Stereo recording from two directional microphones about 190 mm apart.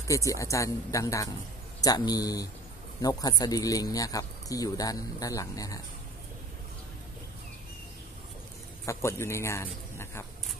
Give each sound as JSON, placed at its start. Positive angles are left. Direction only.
{"t": 0.0, "sound": "a man's voice", "side_deg": 15}
{"t": 8.8, "sound": "speech", "side_deg": 15}